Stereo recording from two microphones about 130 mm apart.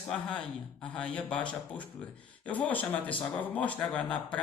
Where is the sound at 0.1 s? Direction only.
5° left (ahead or behind).